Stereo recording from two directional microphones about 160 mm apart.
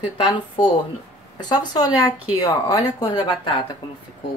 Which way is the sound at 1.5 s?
25° left (ahead or behind).